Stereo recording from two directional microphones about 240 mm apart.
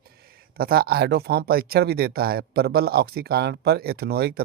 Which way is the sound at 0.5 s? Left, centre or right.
Right.